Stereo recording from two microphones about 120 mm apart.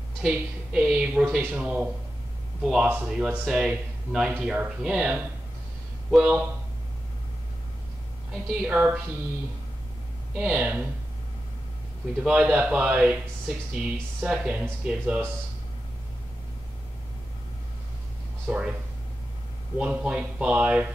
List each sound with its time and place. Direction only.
0.2 s speech: 5° right (ahead or behind)
8.6 s speech: 10° right (ahead or behind)
10.4 s speech: 5° right (ahead or behind)
12.2 s speech: 5° right (ahead or behind)
18.5 s speech: 10° right (ahead or behind)
19.8 s speech: 10° right (ahead or behind)